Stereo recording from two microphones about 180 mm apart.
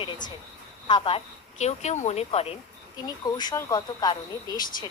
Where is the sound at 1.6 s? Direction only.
40° left (ahead or behind).